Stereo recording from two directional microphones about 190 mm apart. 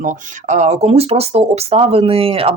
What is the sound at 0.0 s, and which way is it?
Speech, 40° right (ahead or behind).